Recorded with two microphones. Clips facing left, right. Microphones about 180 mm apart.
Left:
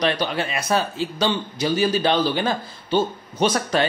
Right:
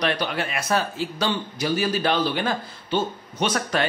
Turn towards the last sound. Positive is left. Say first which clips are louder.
# left 4 dB
turn(degrees=35)  # may be behind; listen again after turning